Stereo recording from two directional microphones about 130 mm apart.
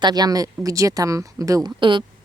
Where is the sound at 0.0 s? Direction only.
30° right (ahead or behind).